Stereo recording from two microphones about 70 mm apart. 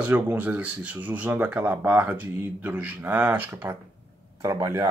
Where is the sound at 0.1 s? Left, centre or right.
Right.